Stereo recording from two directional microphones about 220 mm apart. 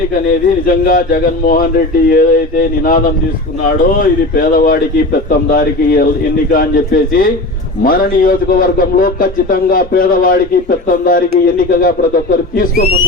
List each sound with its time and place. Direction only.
0.3 s a man's voice: 40° left (ahead or behind)
4.4 s a man's voice: 40° left (ahead or behind)